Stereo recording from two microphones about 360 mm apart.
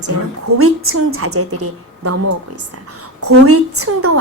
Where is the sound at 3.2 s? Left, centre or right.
Right.